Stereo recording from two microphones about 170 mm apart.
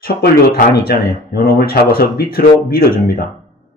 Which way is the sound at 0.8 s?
65° left (ahead or behind).